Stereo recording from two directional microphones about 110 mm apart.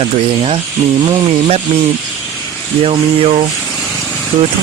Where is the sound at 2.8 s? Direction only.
55° right (ahead or behind).